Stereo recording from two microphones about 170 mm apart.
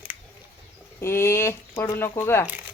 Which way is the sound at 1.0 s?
15° left (ahead or behind).